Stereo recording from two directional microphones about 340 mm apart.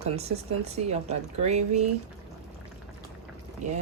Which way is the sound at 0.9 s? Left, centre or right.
Centre.